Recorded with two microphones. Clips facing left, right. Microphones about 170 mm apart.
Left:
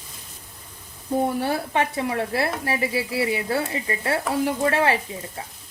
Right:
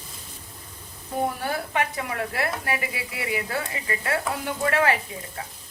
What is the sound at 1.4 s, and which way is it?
Speech, 30° left (ahead or behind).